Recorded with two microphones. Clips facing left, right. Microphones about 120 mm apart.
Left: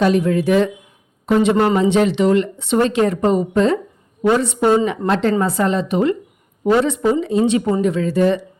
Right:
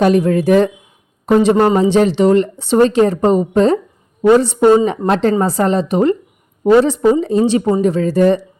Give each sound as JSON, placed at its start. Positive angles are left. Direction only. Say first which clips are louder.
{"t": 0.0, "sound": "speech", "louder": "right 3 dB", "side_deg": -45}